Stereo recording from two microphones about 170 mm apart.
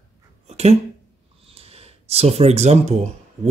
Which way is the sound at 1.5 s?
35° right (ahead or behind).